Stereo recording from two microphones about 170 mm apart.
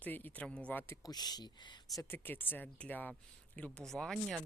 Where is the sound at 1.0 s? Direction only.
25° left (ahead or behind).